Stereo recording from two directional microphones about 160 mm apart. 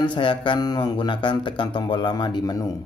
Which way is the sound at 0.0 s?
30° left (ahead or behind).